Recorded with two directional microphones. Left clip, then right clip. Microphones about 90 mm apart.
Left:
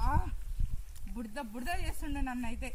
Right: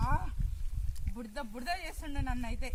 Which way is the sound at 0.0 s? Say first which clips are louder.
Even; centre (ahead or behind).